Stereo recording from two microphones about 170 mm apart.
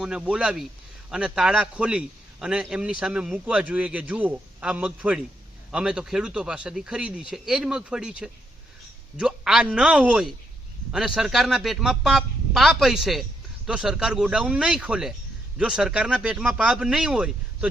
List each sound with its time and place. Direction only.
0.0 s a man's voice: 5° right (ahead or behind)